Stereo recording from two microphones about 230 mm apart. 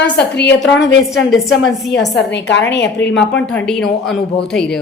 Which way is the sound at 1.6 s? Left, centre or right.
Left.